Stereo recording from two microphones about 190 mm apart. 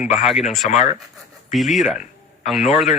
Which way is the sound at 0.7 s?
40° left (ahead or behind).